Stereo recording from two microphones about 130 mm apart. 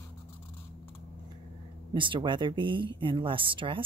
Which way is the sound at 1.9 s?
40° right (ahead or behind).